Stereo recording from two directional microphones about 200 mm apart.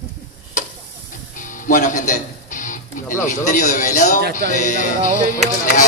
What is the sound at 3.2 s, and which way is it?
A man's voice, 40° left (ahead or behind).